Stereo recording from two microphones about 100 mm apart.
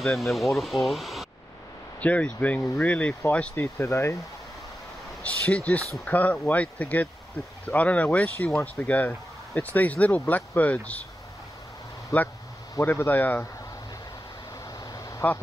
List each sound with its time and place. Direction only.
0.0 s speech: centre (ahead or behind)
2.0 s speech: 15° left (ahead or behind)
5.2 s speech: 15° left (ahead or behind)
12.8 s speech: 20° left (ahead or behind)
14.8 s vehicle: 35° left (ahead or behind)